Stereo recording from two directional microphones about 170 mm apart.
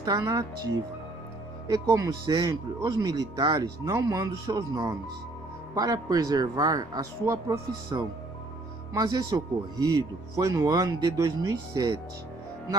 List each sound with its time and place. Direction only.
0.0 s a man's voice: 20° right (ahead or behind)
1.7 s a man's voice: 20° right (ahead or behind)